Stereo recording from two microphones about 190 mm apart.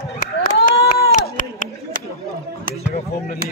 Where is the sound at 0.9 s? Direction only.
50° left (ahead or behind).